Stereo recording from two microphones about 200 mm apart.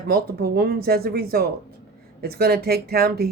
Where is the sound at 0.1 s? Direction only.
50° right (ahead or behind).